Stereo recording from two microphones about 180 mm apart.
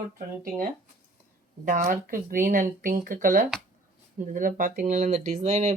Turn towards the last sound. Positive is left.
turn(degrees=-35)  # may be behind; listen again after turning